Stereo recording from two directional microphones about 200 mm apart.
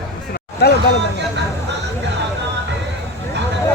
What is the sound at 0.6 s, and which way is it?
Speech, 55° left (ahead or behind).